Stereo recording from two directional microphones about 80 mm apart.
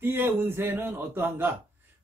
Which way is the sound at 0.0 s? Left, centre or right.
Right.